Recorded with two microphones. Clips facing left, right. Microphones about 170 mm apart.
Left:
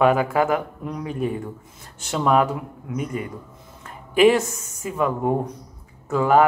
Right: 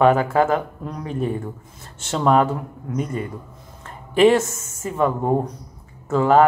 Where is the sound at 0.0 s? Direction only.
10° left (ahead or behind).